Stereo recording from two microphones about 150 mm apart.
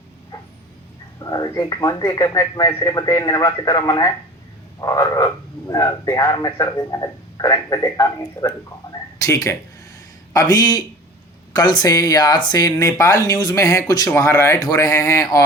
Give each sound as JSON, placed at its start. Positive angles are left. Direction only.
{"t": 1.2, "sound": "speech", "side_deg": 25}